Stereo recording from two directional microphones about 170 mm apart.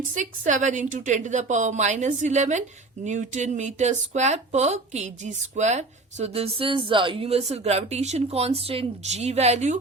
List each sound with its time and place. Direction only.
0.1 s a woman's voice: 50° right (ahead or behind)